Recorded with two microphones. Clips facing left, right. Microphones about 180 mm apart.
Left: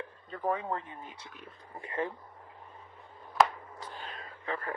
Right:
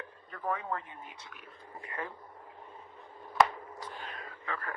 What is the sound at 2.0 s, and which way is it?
Speech, 25° left (ahead or behind).